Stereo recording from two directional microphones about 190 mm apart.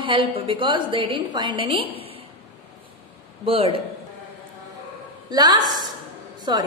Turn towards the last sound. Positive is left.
turn(degrees=-25)  # may be behind; listen again after turning